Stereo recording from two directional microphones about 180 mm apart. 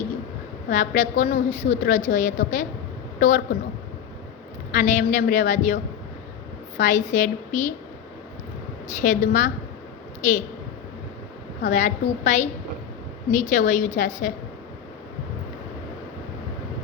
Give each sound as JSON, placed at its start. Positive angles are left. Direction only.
{"t": 0.7, "sound": "a woman's voice", "side_deg": 45}
{"t": 4.7, "sound": "a woman's voice", "side_deg": 45}
{"t": 9.0, "sound": "a woman's voice", "side_deg": 45}
{"t": 11.6, "sound": "a woman's voice", "side_deg": 45}